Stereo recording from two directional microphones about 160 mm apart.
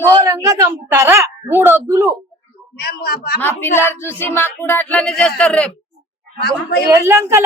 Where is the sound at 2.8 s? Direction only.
75° left (ahead or behind).